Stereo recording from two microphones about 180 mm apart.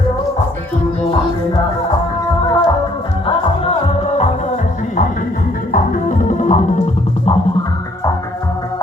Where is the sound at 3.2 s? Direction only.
35° left (ahead or behind).